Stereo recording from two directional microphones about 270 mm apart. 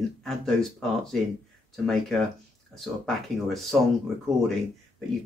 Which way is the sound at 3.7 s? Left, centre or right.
Centre.